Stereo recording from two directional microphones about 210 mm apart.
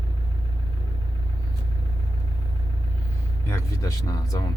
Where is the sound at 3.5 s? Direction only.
15° left (ahead or behind).